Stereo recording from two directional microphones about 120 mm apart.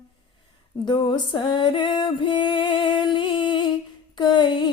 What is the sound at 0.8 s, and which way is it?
Music, 40° left (ahead or behind).